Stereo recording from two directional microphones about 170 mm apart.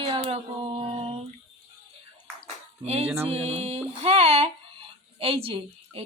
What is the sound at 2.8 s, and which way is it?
A woman's voice, 40° right (ahead or behind).